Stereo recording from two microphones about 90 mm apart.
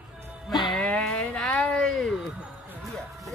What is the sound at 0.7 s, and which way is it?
Speech, 10° left (ahead or behind).